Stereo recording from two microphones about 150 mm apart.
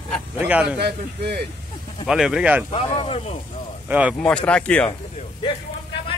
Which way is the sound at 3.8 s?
10° right (ahead or behind).